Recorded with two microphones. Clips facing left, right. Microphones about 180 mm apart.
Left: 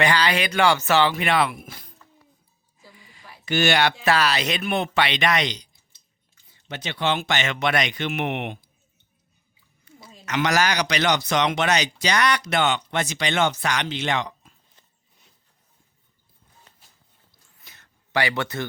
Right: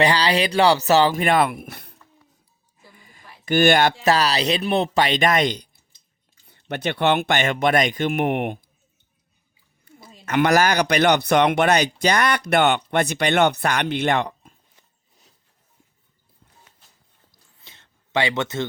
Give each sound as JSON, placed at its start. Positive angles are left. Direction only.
{"t": 0.0, "sound": "speech", "side_deg": -35}
{"t": 10.2, "sound": "a man's voice", "side_deg": -55}
{"t": 17.6, "sound": "a sound", "side_deg": -25}